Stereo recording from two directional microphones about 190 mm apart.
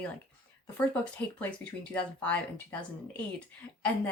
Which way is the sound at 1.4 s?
5° left (ahead or behind).